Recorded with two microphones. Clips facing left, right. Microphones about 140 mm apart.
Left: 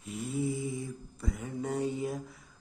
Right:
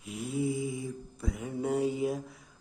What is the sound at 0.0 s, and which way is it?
Mantra, centre (ahead or behind).